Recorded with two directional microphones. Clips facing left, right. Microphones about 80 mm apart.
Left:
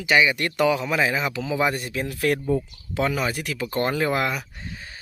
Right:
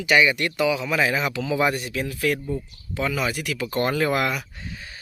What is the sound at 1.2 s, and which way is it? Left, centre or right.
Speech, left.